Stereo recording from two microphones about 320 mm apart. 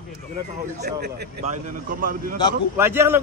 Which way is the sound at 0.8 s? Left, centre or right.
Right.